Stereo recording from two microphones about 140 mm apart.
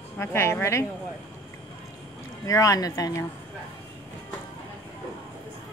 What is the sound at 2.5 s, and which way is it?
Speech, 25° left (ahead or behind).